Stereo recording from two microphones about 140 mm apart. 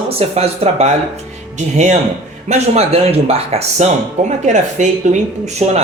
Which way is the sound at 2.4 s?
50° right (ahead or behind).